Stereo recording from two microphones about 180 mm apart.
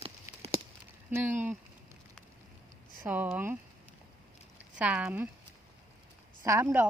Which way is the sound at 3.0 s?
10° right (ahead or behind).